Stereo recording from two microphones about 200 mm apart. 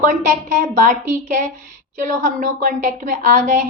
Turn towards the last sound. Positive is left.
turn(degrees=-35)  # may be behind; listen again after turning